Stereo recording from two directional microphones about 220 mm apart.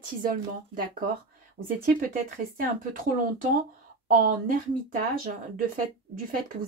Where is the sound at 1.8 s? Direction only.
40° right (ahead or behind).